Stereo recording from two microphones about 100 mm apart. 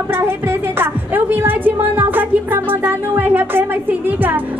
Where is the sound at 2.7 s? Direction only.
20° right (ahead or behind).